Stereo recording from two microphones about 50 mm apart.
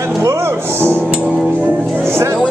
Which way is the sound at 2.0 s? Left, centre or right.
Right.